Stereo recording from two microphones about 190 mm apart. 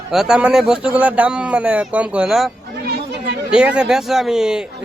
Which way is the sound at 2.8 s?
55° right (ahead or behind).